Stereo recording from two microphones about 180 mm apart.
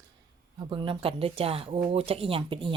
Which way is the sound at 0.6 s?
25° right (ahead or behind).